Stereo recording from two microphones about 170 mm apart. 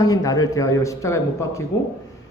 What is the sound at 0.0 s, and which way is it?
Speech, 20° left (ahead or behind).